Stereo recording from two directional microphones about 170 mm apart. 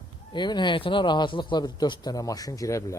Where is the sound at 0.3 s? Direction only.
25° left (ahead or behind).